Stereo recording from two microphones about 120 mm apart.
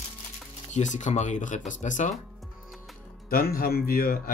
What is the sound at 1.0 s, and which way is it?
Speech, 80° left.